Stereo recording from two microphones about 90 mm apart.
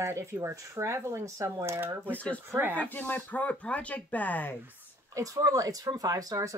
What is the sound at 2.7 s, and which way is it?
Speech, 20° left (ahead or behind).